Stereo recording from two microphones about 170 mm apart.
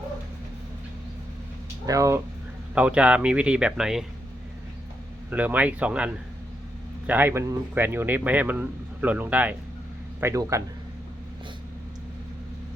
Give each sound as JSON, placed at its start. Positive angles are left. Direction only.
{"t": 1.9, "sound": "speech", "side_deg": -20}
{"t": 2.7, "sound": "speech", "side_deg": -5}
{"t": 5.3, "sound": "speech", "side_deg": -10}
{"t": 7.1, "sound": "speech", "side_deg": -10}